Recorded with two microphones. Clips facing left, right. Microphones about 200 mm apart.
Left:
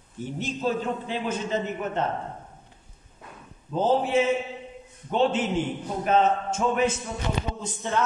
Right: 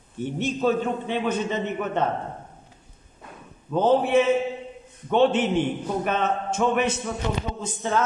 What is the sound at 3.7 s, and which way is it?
A man's voice, 65° right (ahead or behind).